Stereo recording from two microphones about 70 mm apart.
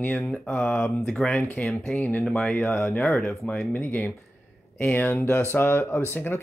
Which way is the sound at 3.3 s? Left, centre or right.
Centre.